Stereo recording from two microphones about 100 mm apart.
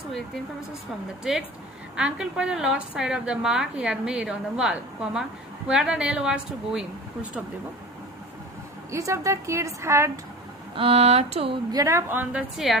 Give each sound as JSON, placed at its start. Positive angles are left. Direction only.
{"t": 1.2, "sound": "a woman's voice", "side_deg": -5}
{"t": 8.9, "sound": "a woman's voice", "side_deg": -30}
{"t": 10.8, "sound": "a sound", "side_deg": -80}
{"t": 11.7, "sound": "a woman's voice", "side_deg": -30}